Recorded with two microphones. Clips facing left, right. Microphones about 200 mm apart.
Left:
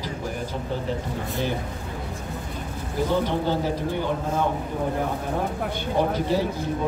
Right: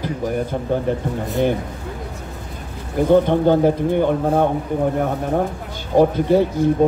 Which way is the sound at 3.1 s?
55° right (ahead or behind).